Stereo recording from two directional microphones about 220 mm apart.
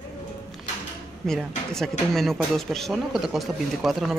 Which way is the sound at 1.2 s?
Centre (ahead or behind).